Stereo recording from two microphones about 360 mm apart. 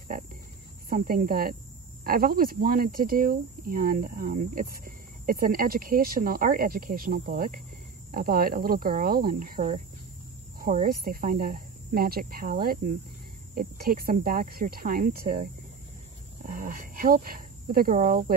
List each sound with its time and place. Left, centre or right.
0.8 s speech: right
16.4 s speech: right